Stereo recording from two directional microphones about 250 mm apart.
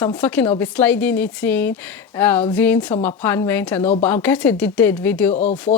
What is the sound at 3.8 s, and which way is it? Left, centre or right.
Speech, left.